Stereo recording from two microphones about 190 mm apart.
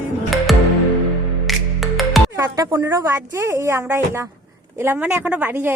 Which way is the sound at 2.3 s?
15° right (ahead or behind).